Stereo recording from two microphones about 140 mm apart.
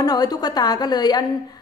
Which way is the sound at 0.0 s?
25° left (ahead or behind).